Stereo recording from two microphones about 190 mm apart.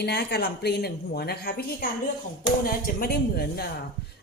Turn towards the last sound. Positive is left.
turn(degrees=55)  # may be behind; listen again after turning